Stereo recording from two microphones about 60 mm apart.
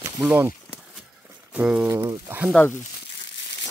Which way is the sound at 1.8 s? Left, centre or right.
Right.